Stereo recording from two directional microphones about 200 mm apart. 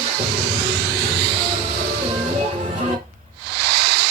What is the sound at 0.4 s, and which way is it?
Music, 60° right (ahead or behind).